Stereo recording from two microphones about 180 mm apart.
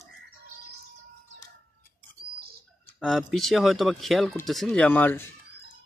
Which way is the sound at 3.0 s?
Centre (ahead or behind).